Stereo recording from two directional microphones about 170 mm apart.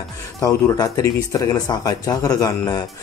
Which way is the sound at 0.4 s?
20° left (ahead or behind).